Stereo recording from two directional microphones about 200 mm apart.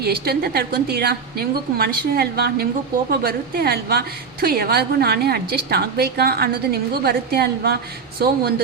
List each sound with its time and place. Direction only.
0.0 s a woman's voice: 50° right (ahead or behind)